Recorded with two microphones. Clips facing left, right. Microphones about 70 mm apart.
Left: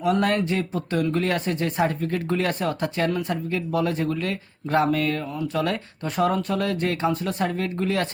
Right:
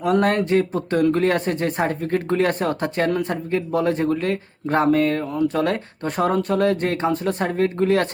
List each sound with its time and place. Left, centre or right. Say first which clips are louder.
0.0 s speech: right 3 dB; right